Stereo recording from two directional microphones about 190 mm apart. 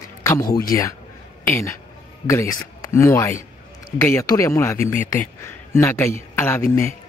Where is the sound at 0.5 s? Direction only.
50° left (ahead or behind).